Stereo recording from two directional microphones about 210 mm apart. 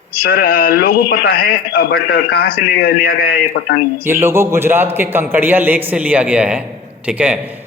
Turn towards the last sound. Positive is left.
turn(degrees=-5)  # may be behind; listen again after turning